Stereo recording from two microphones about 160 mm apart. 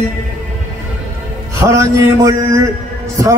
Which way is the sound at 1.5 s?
20° right (ahead or behind).